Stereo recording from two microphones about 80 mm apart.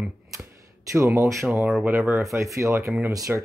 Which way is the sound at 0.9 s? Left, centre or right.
Right.